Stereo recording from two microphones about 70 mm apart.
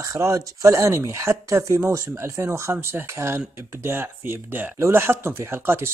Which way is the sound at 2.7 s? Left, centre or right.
Right.